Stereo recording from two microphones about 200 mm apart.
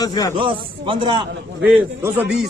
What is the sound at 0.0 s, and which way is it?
Speech, 20° left (ahead or behind).